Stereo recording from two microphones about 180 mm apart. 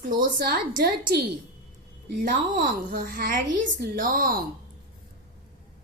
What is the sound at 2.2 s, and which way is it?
A woman's voice, 50° right (ahead or behind).